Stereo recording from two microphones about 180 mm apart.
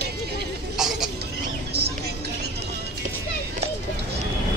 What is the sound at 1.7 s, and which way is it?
Vehicle, 65° right (ahead or behind).